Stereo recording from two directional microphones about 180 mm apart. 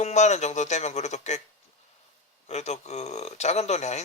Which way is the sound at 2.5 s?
40° left (ahead or behind).